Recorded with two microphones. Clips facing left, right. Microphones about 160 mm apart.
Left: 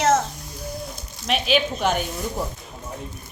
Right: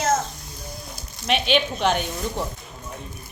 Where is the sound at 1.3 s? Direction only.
Centre (ahead or behind).